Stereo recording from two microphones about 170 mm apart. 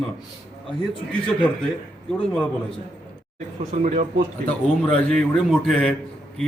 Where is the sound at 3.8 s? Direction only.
45° right (ahead or behind).